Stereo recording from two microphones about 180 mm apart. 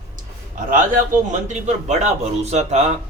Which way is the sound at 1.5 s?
40° right (ahead or behind).